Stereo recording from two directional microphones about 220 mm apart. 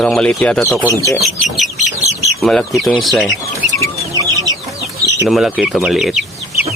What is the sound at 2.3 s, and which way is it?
Speech, centre (ahead or behind).